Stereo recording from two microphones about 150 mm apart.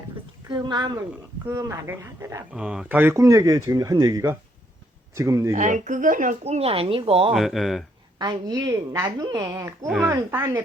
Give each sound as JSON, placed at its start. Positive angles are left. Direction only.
{"t": 0.4, "sound": "speech", "side_deg": -30}
{"t": 2.5, "sound": "speech", "side_deg": -5}
{"t": 5.5, "sound": "speech", "side_deg": -55}
{"t": 7.3, "sound": "speech", "side_deg": 0}
{"t": 8.2, "sound": "speech", "side_deg": -30}
{"t": 9.8, "sound": "speech", "side_deg": 0}
{"t": 10.1, "sound": "speech", "side_deg": -15}